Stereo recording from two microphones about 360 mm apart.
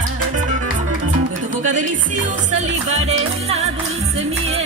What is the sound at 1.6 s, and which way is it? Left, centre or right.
Music, right.